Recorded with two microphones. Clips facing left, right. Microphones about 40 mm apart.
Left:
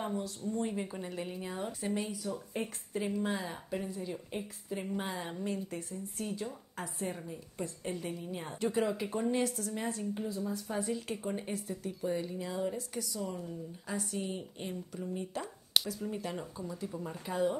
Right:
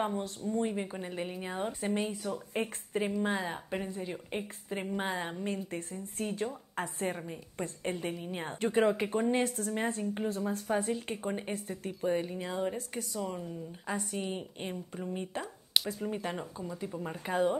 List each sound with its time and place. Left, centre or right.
0.0 s a woman's voice: right
10.3 s a woman's voice: right
11.0 s a woman's voice: right
17.0 s a woman's voice: right